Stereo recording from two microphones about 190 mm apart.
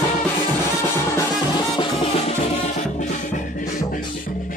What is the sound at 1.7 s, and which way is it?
Music, 25° left (ahead or behind).